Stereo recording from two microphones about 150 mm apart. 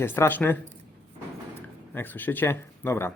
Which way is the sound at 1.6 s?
15° left (ahead or behind).